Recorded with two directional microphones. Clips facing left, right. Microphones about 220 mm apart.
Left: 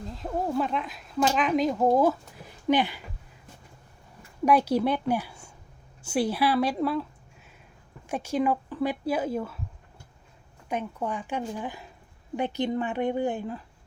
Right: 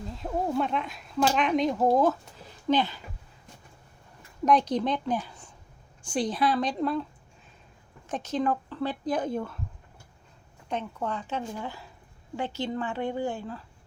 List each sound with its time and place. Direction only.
0.0 s speech: centre (ahead or behind); by 3.0 s 15° left (ahead or behind)
4.4 s speech: 10° left (ahead or behind)
8.0 s speech: 10° left (ahead or behind)
10.7 s speech: 10° left (ahead or behind)